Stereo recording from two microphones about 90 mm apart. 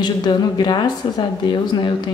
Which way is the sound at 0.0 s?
55° left (ahead or behind).